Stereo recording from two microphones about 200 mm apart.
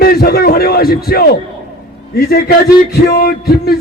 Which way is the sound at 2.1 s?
50° left (ahead or behind).